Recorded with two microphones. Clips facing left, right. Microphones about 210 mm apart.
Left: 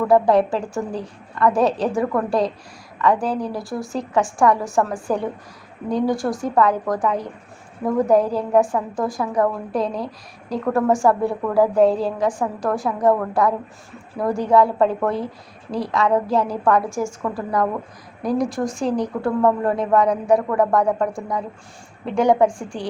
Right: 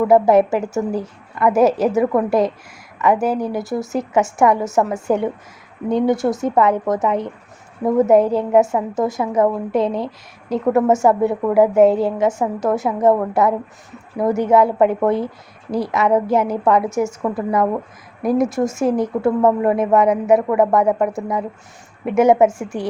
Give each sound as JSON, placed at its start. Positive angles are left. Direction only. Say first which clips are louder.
{"t": 0.1, "sound": "a woman's voice", "louder": "right 2 dB", "side_deg": -20}